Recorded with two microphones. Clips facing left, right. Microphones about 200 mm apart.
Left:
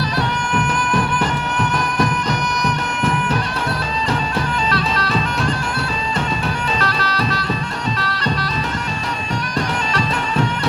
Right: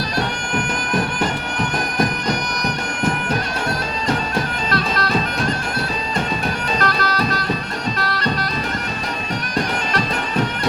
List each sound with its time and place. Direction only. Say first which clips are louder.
4.7 s bagpipes: even; 45° right (ahead or behind)
6.7 s bagpipes: right 1 dB; 45° right (ahead or behind)